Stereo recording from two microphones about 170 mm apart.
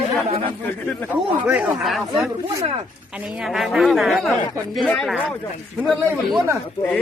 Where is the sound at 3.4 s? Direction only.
Centre (ahead or behind).